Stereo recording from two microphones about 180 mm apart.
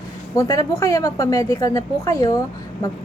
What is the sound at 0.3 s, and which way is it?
A woman's voice, 15° left (ahead or behind).